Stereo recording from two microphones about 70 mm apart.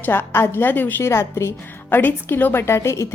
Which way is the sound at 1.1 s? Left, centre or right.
Left.